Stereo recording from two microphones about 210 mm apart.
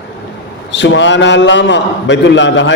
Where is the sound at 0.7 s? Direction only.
60° left (ahead or behind).